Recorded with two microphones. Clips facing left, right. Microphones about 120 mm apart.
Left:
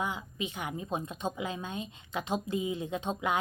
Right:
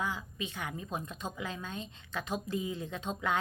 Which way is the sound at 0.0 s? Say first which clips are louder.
Left 2 dB; 20° left (ahead or behind).